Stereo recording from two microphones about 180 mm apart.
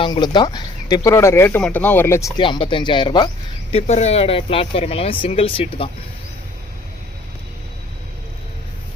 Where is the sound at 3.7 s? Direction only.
40° left (ahead or behind).